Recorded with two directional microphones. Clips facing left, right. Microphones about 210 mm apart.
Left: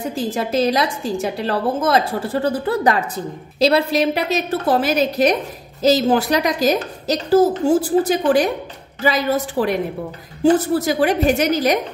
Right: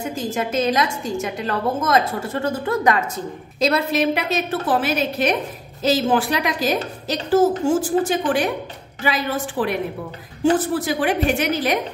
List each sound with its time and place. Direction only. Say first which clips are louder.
0.1 s a woman's voice: left 3 dB; 35° left (ahead or behind)